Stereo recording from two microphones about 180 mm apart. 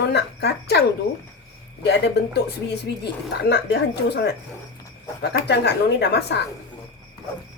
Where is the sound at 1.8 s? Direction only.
70° left (ahead or behind).